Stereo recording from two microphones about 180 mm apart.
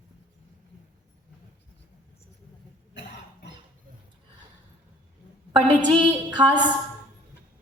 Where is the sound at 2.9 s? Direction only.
75° left (ahead or behind).